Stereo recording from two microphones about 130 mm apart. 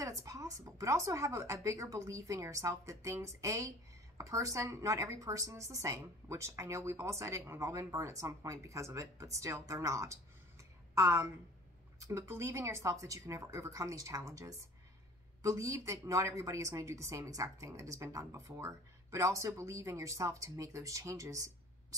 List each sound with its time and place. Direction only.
0.0 s a woman's voice: 25° right (ahead or behind)